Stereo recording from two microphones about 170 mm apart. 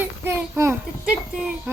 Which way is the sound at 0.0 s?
15° right (ahead or behind).